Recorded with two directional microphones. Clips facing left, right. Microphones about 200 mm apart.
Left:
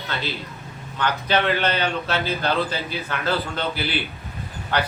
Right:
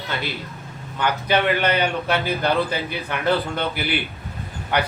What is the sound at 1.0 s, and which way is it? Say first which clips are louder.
A man's voice: right 1 dB; 10° right (ahead or behind).